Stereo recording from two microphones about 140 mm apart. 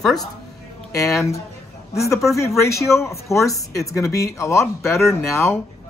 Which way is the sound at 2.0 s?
20° left (ahead or behind).